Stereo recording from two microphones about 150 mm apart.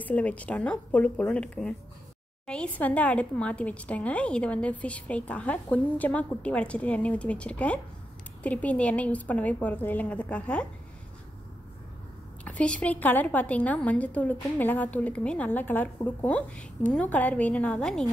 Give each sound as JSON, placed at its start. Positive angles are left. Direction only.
{"t": 0.0, "sound": "a woman's voice", "side_deg": 10}
{"t": 12.4, "sound": "a woman's voice", "side_deg": 10}